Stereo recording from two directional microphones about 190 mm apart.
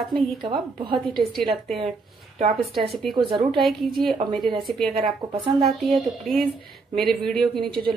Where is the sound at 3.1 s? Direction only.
25° right (ahead or behind).